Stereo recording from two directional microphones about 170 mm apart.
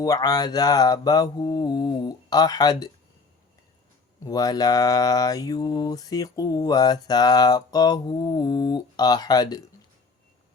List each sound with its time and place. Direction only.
0.0 s mantra: 20° left (ahead or behind)
4.2 s mantra: 20° left (ahead or behind)